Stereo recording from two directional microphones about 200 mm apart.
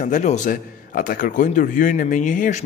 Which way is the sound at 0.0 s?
40° left (ahead or behind).